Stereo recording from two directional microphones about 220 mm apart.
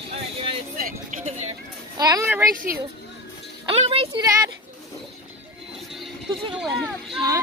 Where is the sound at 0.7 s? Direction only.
35° right (ahead or behind).